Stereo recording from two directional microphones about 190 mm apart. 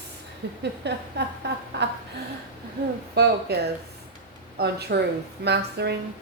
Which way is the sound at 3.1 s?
60° right (ahead or behind).